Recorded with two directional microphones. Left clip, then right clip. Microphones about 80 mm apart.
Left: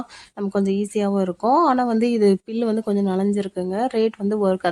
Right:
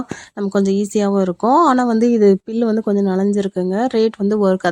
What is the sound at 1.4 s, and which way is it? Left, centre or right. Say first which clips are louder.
A woman's voice: right 4 dB; right.